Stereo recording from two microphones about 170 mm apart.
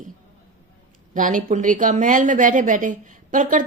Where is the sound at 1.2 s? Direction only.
50° right (ahead or behind).